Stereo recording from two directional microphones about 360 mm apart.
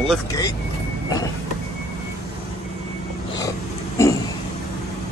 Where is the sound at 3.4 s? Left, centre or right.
Centre.